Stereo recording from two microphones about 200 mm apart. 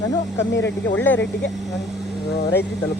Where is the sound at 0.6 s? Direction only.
65° left (ahead or behind).